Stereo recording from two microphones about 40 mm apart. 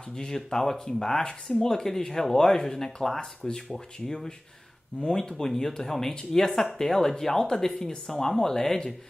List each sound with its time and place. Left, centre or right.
0.1 s speech: centre